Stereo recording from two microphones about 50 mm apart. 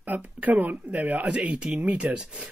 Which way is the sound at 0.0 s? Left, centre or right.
Right.